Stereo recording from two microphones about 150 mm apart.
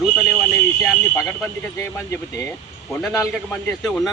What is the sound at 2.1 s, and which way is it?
Speech, 20° left (ahead or behind).